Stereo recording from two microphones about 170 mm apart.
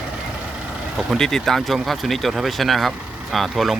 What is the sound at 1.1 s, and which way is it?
Speech, 5° left (ahead or behind).